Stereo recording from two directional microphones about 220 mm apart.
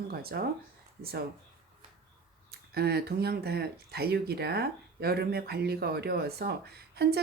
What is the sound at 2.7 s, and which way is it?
Speech, 45° right (ahead or behind).